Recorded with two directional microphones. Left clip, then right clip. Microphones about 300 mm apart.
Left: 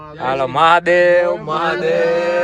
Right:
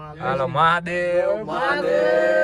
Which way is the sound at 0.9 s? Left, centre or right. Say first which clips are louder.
Left 10 dB; left.